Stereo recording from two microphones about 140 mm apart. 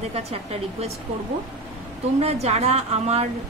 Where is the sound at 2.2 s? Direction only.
50° right (ahead or behind).